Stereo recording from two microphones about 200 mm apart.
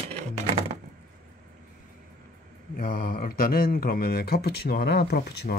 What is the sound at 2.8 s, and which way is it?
Speech, 45° left (ahead or behind).